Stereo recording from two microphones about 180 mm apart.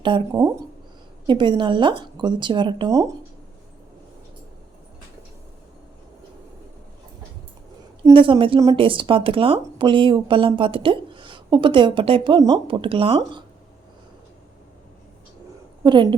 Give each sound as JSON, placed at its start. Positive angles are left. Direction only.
{"t": 0.3, "sound": "speech", "side_deg": -15}
{"t": 1.3, "sound": "speech", "side_deg": -25}
{"t": 8.1, "sound": "speech", "side_deg": -30}
{"t": 15.8, "sound": "a woman's voice", "side_deg": -25}